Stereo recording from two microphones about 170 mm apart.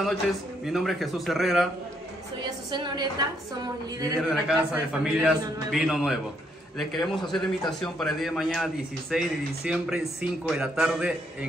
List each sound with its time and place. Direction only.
0.7 s a man's voice: centre (ahead or behind)
2.7 s a woman's voice: 25° right (ahead or behind)
4.2 s a man's voice: centre (ahead or behind)
7.2 s a man's voice: 25° left (ahead or behind)
7.8 s a man's voice: centre (ahead or behind)